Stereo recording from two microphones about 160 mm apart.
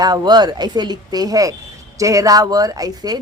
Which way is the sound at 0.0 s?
25° right (ahead or behind).